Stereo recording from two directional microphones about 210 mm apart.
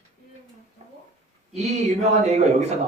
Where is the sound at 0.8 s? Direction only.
30° right (ahead or behind).